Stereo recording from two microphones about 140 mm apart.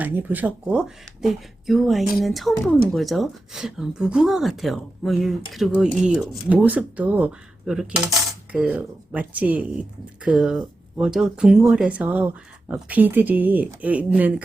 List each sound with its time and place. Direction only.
0.0 s speech: 15° right (ahead or behind)